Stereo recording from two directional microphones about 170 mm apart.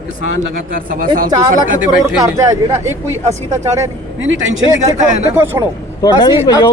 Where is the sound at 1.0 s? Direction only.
55° right (ahead or behind).